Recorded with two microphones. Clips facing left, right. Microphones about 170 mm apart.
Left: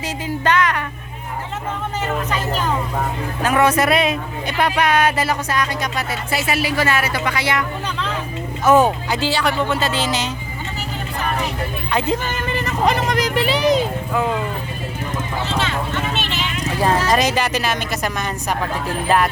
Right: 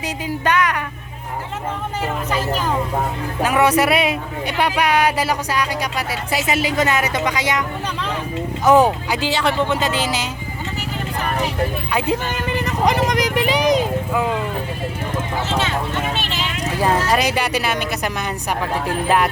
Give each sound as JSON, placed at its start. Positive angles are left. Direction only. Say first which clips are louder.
{"t": 0.0, "sound": "speech", "louder": "even", "side_deg": -10}
{"t": 3.4, "sound": "speech", "louder": "even", "side_deg": -15}
{"t": 8.6, "sound": "speech", "louder": "even", "side_deg": -15}
{"t": 11.9, "sound": "speech", "louder": "left 1 dB", "side_deg": -10}
{"t": 16.1, "sound": "a sound", "louder": "left 1 dB", "side_deg": -10}
{"t": 18.6, "sound": "speech", "louder": "right 1 dB", "side_deg": -15}